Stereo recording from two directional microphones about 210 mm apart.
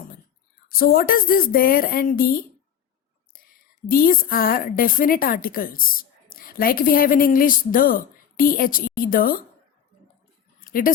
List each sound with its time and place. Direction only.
0.7 s a woman's voice: 45° left (ahead or behind)
3.8 s a woman's voice: 45° left (ahead or behind)
10.6 s a sound: 40° left (ahead or behind)